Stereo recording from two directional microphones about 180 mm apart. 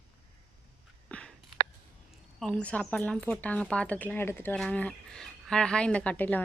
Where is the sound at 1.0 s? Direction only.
5° left (ahead or behind).